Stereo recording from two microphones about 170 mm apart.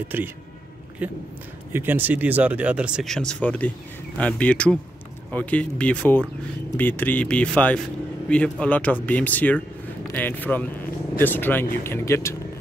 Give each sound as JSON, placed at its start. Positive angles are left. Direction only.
{"t": 0.1, "sound": "speech", "side_deg": -10}